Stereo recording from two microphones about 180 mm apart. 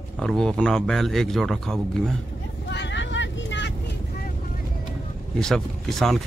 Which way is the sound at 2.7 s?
80° left.